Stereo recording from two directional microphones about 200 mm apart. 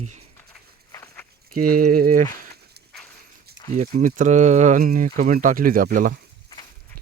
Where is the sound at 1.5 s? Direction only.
45° right (ahead or behind).